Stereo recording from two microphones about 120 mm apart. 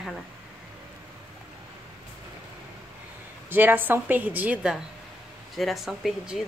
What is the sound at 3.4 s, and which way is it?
A woman's voice, 15° right (ahead or behind).